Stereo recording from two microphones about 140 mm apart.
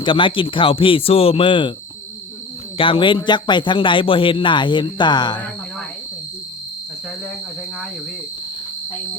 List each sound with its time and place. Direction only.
0.0 s a man's voice: 35° left (ahead or behind)
2.7 s a man's voice: 40° left (ahead or behind)